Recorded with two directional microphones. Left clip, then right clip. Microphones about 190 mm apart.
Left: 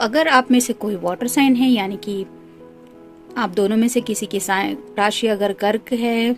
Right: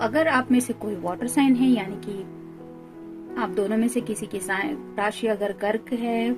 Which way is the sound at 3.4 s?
50° left (ahead or behind).